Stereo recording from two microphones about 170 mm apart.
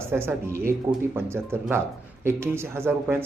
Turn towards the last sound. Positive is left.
turn(degrees=-15)  # may be behind; listen again after turning